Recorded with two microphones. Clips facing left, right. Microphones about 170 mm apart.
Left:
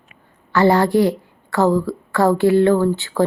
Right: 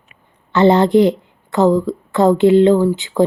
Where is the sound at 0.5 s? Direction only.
20° right (ahead or behind).